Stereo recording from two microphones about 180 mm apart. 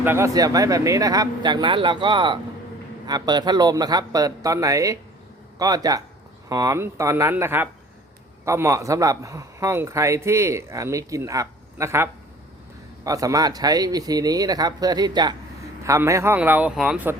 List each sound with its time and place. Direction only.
0.0 s a man's voice: 15° right (ahead or behind)
13.1 s a man's voice: 20° right (ahead or behind)